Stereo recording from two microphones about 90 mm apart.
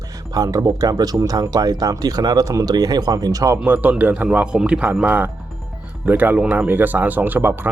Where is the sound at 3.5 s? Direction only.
20° right (ahead or behind).